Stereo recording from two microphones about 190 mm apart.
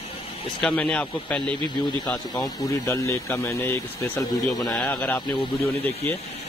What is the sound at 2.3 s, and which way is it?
Speech, 20° left (ahead or behind).